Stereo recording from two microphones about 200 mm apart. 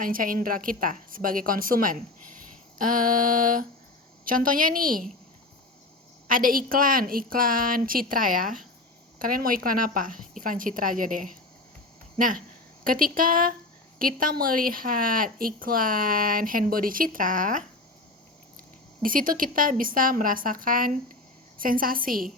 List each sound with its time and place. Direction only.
0.0 s a woman's voice: 45° right (ahead or behind)
6.2 s a woman's voice: 45° right (ahead or behind)
19.0 s a woman's voice: 45° right (ahead or behind)